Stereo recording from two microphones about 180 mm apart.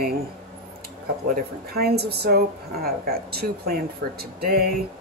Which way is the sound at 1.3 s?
60° right (ahead or behind).